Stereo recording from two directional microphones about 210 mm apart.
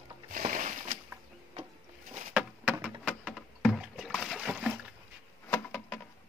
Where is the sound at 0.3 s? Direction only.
40° right (ahead or behind).